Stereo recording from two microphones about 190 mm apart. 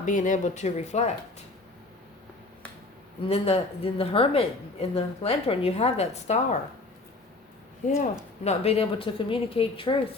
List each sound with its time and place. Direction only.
0.0 s a woman's voice: 40° left (ahead or behind)
3.2 s a woman's voice: 30° left (ahead or behind)
8.4 s a woman's voice: 30° left (ahead or behind)